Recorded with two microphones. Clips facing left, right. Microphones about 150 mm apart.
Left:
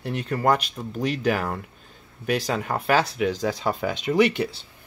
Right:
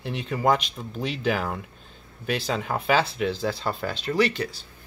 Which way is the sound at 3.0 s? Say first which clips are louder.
Left 2 dB; 10° left (ahead or behind).